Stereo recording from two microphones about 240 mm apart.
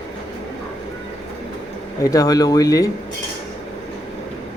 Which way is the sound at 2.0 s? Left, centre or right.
Centre.